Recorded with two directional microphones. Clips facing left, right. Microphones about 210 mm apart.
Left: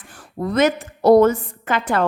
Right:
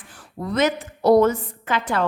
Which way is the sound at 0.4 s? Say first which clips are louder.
Left 3 dB; 50° left (ahead or behind).